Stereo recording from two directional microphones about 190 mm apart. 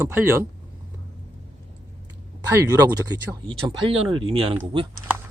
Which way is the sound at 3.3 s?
25° right (ahead or behind).